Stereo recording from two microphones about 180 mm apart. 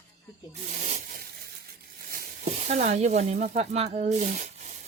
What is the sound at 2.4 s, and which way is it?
Speech, 40° right (ahead or behind).